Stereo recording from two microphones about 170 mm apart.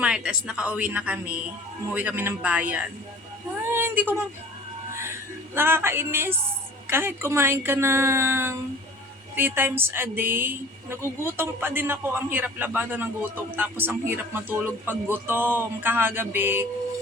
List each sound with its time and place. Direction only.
0.0 s speech: 5° right (ahead or behind)
3.7 s a sound: 15° right (ahead or behind)
5.5 s speech: 15° right (ahead or behind)